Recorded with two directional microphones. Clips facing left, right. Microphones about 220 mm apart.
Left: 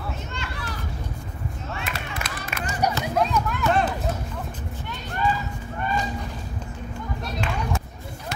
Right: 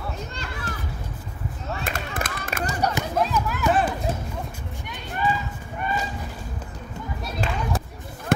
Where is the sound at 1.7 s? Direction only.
50° right (ahead or behind).